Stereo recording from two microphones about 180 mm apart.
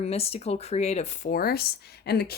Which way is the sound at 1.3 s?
55° left (ahead or behind).